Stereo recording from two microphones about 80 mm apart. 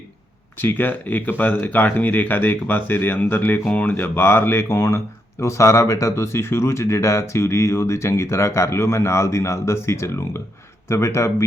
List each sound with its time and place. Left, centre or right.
0.6 s speech: left